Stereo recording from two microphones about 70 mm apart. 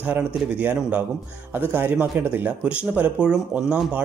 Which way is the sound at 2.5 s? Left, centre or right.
Centre.